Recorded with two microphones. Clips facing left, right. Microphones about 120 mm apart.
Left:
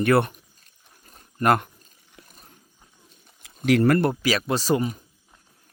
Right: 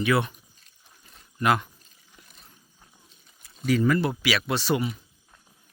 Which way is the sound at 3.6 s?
70° left (ahead or behind).